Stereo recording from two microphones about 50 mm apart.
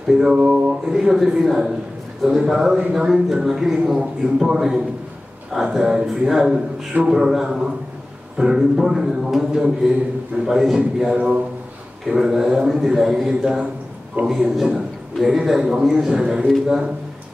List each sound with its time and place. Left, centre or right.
0.0 s a sound: centre
0.4 s a man's voice: right
11.1 s speech: right
12.1 s a man's voice: centre